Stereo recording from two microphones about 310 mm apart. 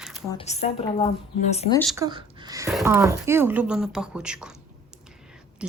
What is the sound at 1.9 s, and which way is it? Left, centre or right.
Speech, centre.